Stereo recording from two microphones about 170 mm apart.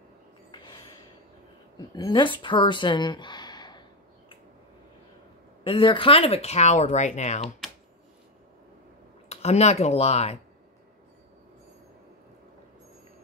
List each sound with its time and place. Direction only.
0.5 s a sound: 25° left (ahead or behind)
2.0 s speech: 25° left (ahead or behind)
5.6 s speech: 30° left (ahead or behind)
9.3 s speech: 40° left (ahead or behind)